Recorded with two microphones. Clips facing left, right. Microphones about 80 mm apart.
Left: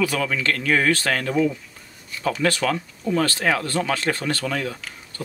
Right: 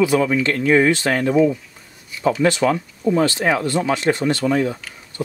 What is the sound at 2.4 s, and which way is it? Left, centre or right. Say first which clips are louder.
Speech: right 4 dB; right.